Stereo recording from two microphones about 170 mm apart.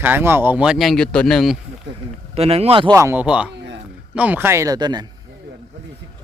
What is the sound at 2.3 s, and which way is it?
Speech, 35° right (ahead or behind).